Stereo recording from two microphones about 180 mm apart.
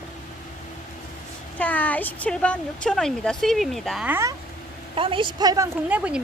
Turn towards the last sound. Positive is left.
turn(degrees=-5)  # may be behind; listen again after turning